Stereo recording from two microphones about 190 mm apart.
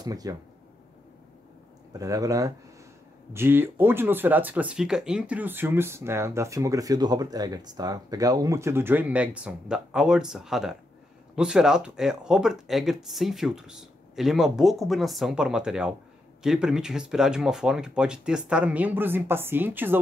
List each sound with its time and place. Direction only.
0.0 s speech: 20° right (ahead or behind)
2.0 s speech: 20° right (ahead or behind)